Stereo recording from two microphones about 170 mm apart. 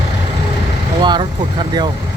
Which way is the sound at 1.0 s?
25° right (ahead or behind).